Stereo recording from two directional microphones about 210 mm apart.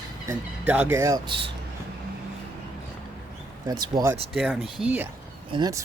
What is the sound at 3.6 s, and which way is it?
Speech, 20° right (ahead or behind).